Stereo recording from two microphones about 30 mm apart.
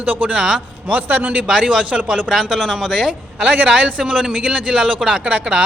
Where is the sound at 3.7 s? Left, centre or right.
Right.